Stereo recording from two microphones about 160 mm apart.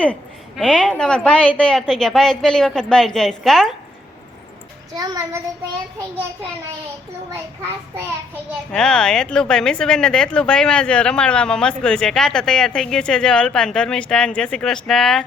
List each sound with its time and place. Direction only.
0.0 s a woman's voice: 5° left (ahead or behind)
4.9 s a child's voice: 20° right (ahead or behind)
8.7 s a woman's voice: 5° left (ahead or behind)